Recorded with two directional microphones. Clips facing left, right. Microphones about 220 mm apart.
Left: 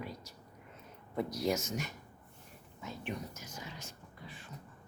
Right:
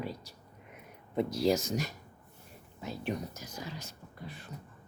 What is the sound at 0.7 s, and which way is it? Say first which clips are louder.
Speech: right 4 dB; 20° right (ahead or behind).